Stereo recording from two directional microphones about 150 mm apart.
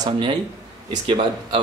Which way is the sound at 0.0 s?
30° right (ahead or behind).